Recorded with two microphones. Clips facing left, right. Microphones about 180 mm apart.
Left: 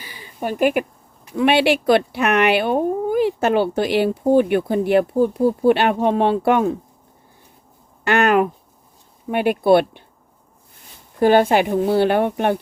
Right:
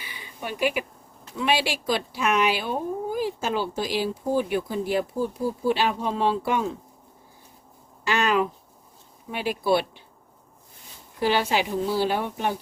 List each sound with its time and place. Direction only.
0.0 s a sound: 40° left (ahead or behind)
1.4 s speech: 60° left (ahead or behind)
8.0 s speech: 60° left (ahead or behind)
11.2 s speech: 50° left (ahead or behind)